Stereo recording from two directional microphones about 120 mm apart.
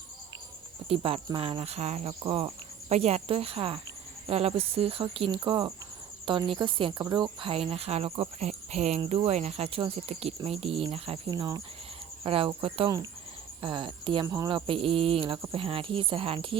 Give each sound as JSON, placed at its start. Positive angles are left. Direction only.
{"t": 0.9, "sound": "speech", "side_deg": -55}
{"t": 2.2, "sound": "speech", "side_deg": -50}
{"t": 11.3, "sound": "speech", "side_deg": -35}
{"t": 12.2, "sound": "speech", "side_deg": -50}
{"t": 14.3, "sound": "speech", "side_deg": -25}
{"t": 14.5, "sound": "speech", "side_deg": -50}